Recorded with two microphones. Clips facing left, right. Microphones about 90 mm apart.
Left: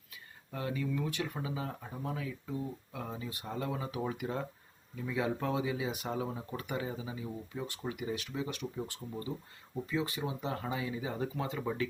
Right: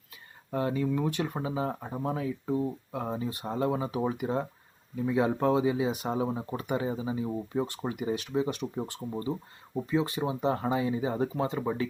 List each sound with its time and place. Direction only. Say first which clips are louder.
0.5 s speech: right 7 dB; 35° right (ahead or behind)